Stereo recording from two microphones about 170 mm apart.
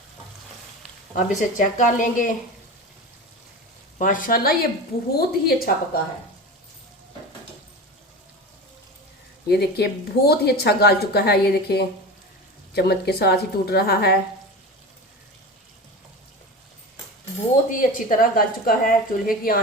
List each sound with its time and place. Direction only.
1.1 s a woman's voice: 50° left (ahead or behind)
3.9 s a woman's voice: 50° left (ahead or behind)
9.5 s speech: 70° left (ahead or behind)
17.7 s a woman's voice: 55° left (ahead or behind)